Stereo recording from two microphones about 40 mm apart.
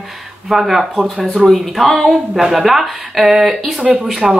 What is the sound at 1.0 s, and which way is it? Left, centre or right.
Speech, right.